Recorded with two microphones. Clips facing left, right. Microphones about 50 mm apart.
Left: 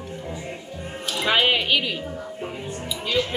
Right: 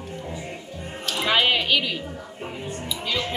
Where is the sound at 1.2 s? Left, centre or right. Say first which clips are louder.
Left 1 dB; centre.